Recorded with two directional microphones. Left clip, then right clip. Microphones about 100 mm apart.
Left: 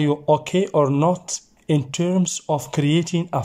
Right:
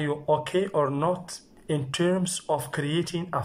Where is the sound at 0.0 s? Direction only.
40° left (ahead or behind).